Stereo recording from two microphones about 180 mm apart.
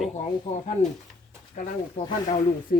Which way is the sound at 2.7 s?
50° left (ahead or behind).